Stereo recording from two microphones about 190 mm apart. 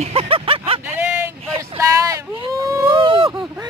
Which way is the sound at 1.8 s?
15° right (ahead or behind).